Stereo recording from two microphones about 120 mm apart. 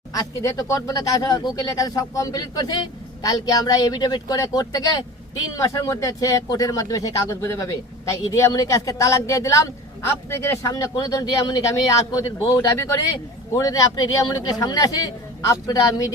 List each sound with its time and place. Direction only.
0.1 s speech: 30° left (ahead or behind)